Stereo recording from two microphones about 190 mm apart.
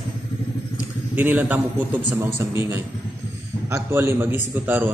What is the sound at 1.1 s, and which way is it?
A man's voice, 10° right (ahead or behind).